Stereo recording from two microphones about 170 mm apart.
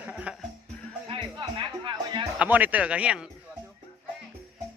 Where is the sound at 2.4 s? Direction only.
10° right (ahead or behind).